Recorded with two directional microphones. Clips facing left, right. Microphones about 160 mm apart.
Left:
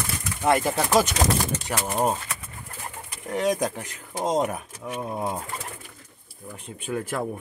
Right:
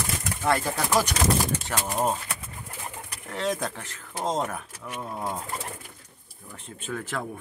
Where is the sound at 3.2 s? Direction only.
15° left (ahead or behind).